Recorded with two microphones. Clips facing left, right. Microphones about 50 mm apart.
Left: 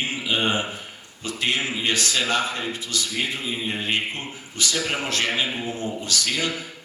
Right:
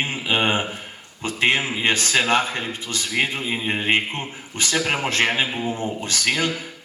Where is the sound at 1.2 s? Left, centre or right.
Right.